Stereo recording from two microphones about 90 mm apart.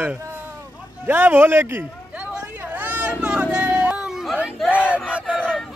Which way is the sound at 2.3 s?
20° right (ahead or behind).